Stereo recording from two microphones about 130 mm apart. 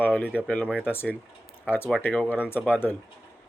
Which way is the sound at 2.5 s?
15° left (ahead or behind).